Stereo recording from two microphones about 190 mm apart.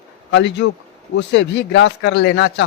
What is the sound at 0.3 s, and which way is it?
A man's voice, 65° left (ahead or behind).